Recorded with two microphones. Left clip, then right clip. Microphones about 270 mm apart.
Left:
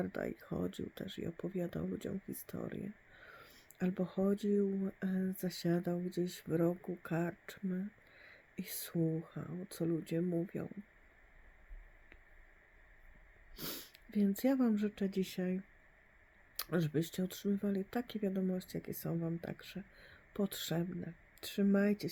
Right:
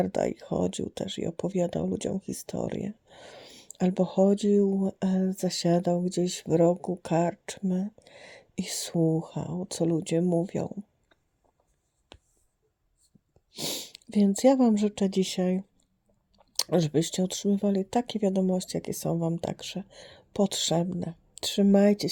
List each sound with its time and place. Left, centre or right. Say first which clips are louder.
0.0 s speech: right 13 dB; centre
9.0 s speech: right 11 dB; right
13.5 s speech: right 13 dB; centre